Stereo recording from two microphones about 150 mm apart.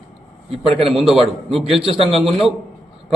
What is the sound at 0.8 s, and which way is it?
A man's voice, centre (ahead or behind).